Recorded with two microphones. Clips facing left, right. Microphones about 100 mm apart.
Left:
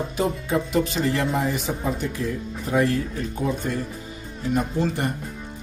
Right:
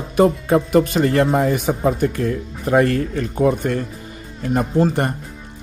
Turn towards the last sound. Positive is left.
turn(degrees=-50)  # may be behind; listen again after turning